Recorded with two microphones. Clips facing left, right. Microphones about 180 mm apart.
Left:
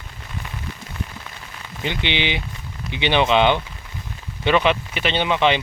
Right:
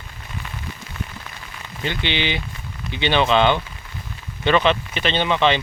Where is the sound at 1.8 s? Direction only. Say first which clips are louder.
Even; 15° left (ahead or behind).